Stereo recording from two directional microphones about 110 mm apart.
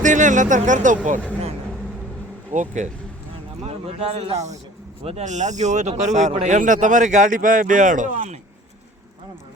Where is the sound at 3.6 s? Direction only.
70° right (ahead or behind); by 6.3 s 90° right.